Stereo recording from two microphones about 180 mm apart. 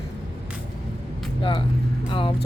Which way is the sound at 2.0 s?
30° left (ahead or behind).